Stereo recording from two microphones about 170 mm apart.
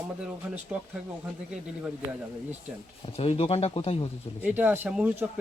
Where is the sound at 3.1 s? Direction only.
40° left (ahead or behind).